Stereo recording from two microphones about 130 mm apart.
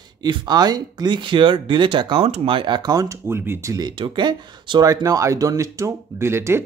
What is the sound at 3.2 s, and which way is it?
Speech, 15° right (ahead or behind).